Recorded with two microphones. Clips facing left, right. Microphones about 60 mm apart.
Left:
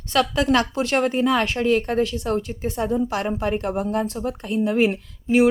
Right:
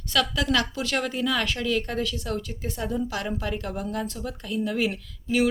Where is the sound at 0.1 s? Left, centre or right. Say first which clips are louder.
Left 5 dB; left.